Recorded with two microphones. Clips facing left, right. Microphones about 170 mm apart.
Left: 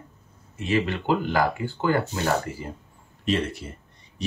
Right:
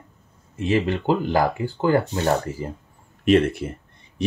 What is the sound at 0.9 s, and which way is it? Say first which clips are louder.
Speech: right 3 dB; 40° right (ahead or behind).